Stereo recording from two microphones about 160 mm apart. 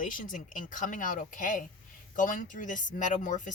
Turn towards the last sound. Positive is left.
turn(degrees=50)  # may be behind; listen again after turning